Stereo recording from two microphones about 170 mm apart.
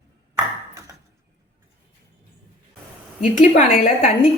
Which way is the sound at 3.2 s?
50° left (ahead or behind).